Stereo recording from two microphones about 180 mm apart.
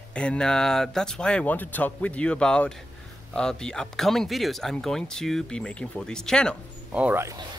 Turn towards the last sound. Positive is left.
turn(degrees=-15)  # may be behind; listen again after turning